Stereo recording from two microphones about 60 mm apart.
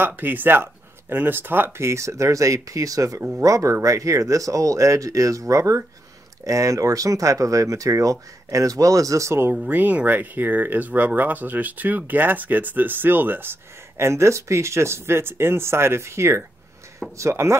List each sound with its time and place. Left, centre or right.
0.0 s speech: right
9.7 s speech: right
13.9 s speech: right